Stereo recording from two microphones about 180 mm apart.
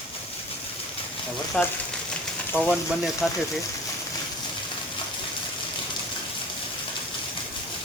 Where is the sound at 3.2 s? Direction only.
Centre (ahead or behind).